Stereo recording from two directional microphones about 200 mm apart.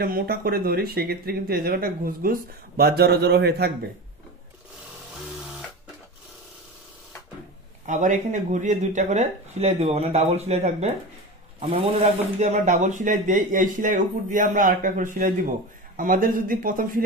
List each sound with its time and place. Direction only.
0.0 s speech: 50° right (ahead or behind)
7.8 s speech: 40° right (ahead or behind)